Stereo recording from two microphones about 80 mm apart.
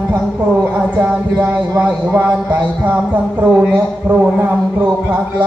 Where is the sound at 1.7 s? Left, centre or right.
Centre.